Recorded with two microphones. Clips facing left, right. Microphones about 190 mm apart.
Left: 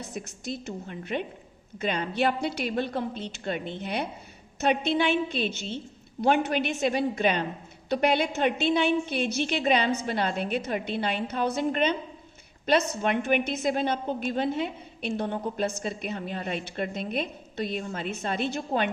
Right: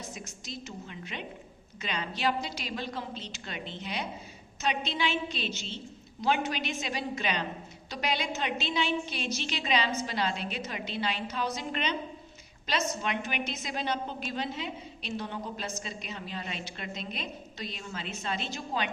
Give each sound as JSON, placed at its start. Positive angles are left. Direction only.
{"t": 0.0, "sound": "a woman's voice", "side_deg": 60}